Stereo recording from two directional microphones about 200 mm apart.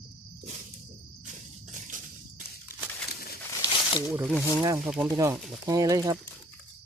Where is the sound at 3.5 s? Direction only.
15° left (ahead or behind).